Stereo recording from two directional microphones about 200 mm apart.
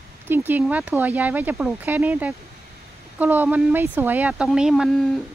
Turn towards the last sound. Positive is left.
turn(degrees=0)  # may be behind; listen again after turning